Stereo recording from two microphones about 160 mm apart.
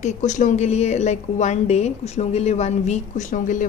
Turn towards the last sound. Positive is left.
turn(degrees=55)  # may be behind; listen again after turning